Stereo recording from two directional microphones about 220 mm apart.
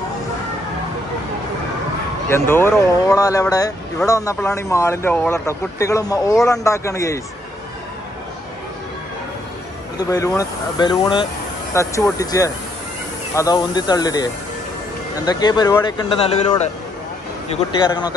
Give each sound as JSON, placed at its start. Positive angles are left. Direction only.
{"t": 2.2, "sound": "speech", "side_deg": 10}
{"t": 9.9, "sound": "speech", "side_deg": 15}
{"t": 17.7, "sound": "speech", "side_deg": 20}